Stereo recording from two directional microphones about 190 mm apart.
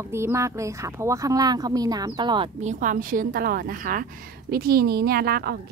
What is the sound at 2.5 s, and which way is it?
A woman's voice, 40° right (ahead or behind).